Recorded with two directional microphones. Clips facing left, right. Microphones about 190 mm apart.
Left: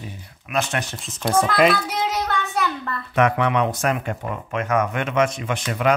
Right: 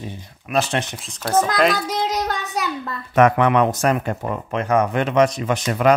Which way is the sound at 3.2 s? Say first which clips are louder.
Right 4 dB; 45° right (ahead or behind).